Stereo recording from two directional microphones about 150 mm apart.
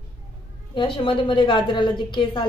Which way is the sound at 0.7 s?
35° left (ahead or behind).